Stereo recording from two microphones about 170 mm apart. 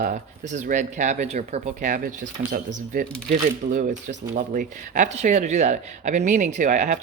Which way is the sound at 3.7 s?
55° right (ahead or behind).